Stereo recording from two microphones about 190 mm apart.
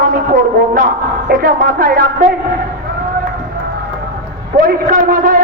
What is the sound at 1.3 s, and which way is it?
Speech, 45° right (ahead or behind).